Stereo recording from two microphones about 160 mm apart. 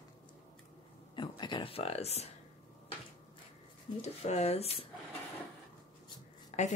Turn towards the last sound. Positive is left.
turn(degrees=45)  # may be behind; listen again after turning